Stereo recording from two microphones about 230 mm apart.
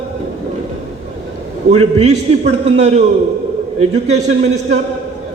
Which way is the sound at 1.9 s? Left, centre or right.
Right.